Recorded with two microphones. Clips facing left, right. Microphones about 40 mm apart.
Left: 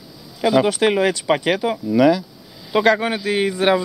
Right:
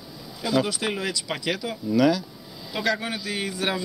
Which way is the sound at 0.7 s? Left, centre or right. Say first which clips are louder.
Left 11 dB; left.